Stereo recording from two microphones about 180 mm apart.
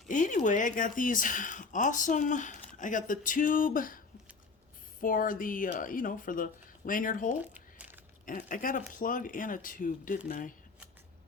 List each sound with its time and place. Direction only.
0.1 s speech: 45° left (ahead or behind)
7.3 s a sound: 10° right (ahead or behind)
8.2 s speech: 50° left (ahead or behind)